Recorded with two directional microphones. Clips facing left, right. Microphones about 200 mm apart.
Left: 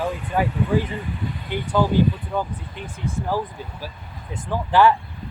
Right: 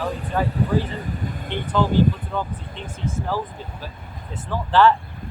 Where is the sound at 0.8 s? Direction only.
45° right (ahead or behind).